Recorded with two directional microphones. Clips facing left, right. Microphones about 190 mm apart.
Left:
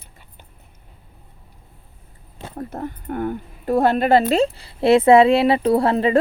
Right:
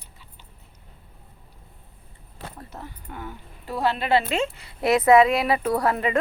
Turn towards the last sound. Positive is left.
turn(degrees=30)  # may be behind; listen again after turning